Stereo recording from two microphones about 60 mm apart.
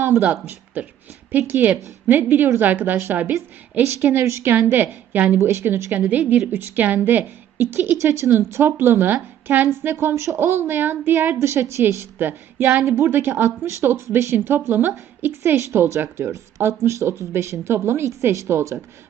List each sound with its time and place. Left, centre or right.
0.0 s speech: right
0.3 s a woman's voice: right
4.5 s a woman's voice: right
5.4 s a woman's voice: right
5.6 s a woman's voice: right
8.3 s a woman's voice: right
11.3 s a woman's voice: right
16.6 s a woman's voice: right